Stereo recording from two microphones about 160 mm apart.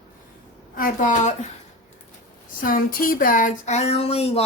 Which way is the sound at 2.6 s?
60° left (ahead or behind).